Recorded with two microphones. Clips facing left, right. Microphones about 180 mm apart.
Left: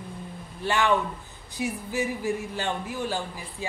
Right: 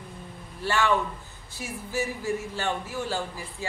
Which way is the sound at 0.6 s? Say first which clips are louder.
Left 1 dB; 20° left (ahead or behind).